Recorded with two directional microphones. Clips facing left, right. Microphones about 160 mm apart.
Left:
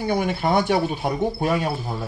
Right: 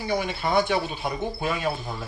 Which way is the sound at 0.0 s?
55° left (ahead or behind).